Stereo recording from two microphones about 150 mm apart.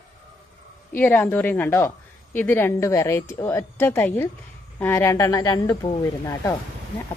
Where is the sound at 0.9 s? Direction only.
10° left (ahead or behind).